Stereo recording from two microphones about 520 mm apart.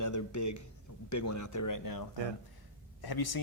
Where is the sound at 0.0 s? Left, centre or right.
Left.